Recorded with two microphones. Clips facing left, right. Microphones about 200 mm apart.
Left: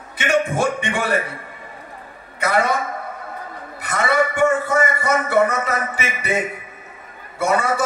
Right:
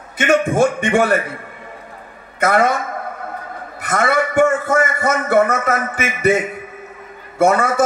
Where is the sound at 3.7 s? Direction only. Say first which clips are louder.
Right 2 dB; 50° right (ahead or behind).